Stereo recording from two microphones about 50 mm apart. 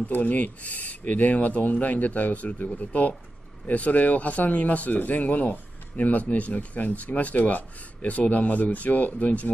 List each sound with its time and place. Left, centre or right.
0.0 s speech: left